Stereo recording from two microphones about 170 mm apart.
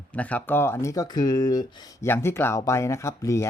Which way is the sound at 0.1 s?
10° left (ahead or behind).